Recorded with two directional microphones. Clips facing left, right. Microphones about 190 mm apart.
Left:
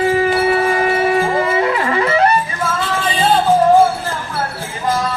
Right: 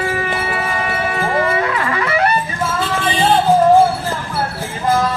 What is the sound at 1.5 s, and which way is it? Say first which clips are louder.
Music: left 3 dB; 25° left (ahead or behind).